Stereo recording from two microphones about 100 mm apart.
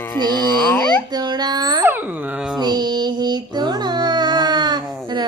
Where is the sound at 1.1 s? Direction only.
45° right (ahead or behind).